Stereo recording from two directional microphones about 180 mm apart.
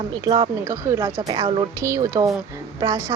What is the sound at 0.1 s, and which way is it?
A woman's voice, 25° right (ahead or behind).